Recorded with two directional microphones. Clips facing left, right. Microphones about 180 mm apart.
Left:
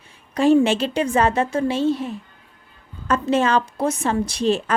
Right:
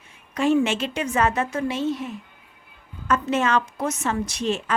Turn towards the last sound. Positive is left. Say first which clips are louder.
# left 5 dB
turn(degrees=35)  # may be behind; listen again after turning